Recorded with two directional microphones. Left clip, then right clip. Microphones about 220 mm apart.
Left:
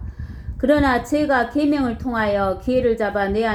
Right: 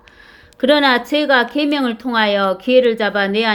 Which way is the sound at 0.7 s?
55° right (ahead or behind).